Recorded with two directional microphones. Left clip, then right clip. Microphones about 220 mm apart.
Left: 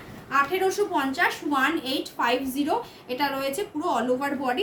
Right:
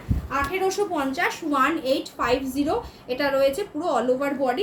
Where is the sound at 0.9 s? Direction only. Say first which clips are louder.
Left 1 dB; 20° left (ahead or behind).